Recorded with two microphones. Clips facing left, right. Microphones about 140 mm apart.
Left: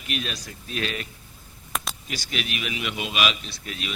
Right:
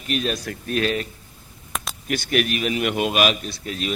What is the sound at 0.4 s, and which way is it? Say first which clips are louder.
Speech: right 8 dB; 65° right (ahead or behind).